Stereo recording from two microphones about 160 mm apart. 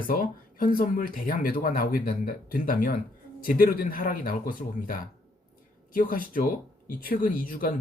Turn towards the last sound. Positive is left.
turn(degrees=60)  # may be behind; listen again after turning